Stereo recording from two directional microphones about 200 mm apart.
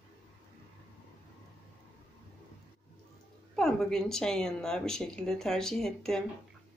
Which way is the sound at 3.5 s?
Centre (ahead or behind).